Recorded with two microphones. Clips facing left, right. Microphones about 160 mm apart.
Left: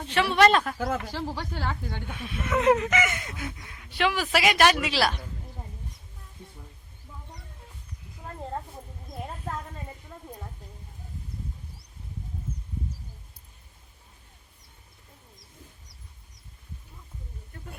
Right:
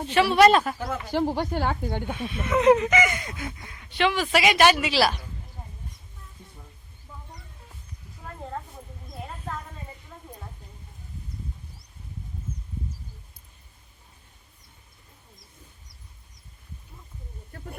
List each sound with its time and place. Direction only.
0.1 s speech: 5° right (ahead or behind)
1.1 s speech: 50° right (ahead or behind)
2.1 s speech: centre (ahead or behind)